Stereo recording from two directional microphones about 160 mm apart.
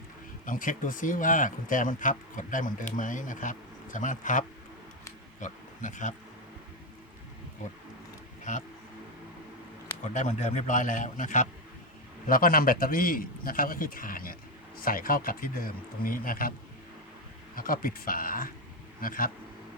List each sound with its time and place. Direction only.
0.4 s a man's voice: 55° left (ahead or behind)
10.2 s a man's voice: 50° left (ahead or behind)
12.3 s speech: 65° left (ahead or behind)
17.5 s speech: 60° left (ahead or behind)